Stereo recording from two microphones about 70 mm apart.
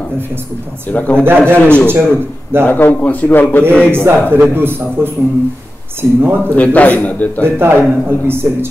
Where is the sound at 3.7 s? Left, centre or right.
Centre.